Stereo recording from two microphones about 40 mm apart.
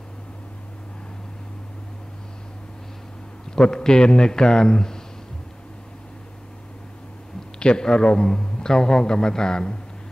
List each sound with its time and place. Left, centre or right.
3.5 s a man's voice: centre
7.5 s a man's voice: left